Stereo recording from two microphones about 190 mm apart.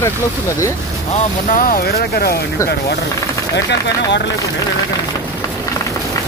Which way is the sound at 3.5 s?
65° left (ahead or behind).